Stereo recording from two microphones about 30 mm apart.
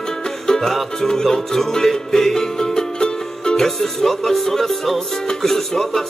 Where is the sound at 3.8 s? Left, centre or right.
Centre.